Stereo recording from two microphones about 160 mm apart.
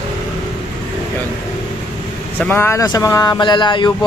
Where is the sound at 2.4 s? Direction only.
15° left (ahead or behind).